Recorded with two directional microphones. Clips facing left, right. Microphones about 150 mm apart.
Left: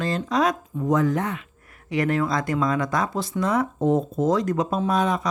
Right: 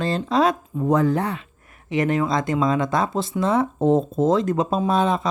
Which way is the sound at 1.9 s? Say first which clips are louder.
Right 2 dB; 20° right (ahead or behind).